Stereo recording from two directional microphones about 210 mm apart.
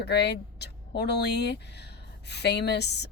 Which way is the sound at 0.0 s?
55° left (ahead or behind).